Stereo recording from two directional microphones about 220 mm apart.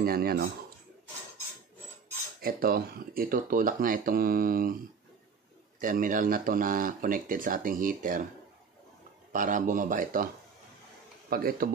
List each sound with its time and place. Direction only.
0.0 s speech: 45° right (ahead or behind)
2.4 s speech: 40° right (ahead or behind)
5.8 s speech: 35° right (ahead or behind)
9.3 s speech: 35° right (ahead or behind)
11.2 s speech: 40° right (ahead or behind)